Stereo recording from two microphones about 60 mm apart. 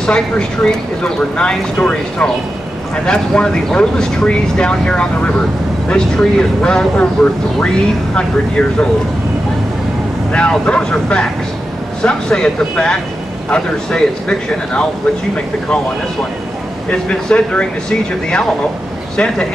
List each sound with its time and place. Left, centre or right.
0.0 s speech: centre
10.3 s speech: centre
16.9 s speech: centre